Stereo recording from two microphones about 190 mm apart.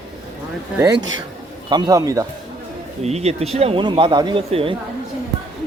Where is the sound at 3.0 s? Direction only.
35° right (ahead or behind).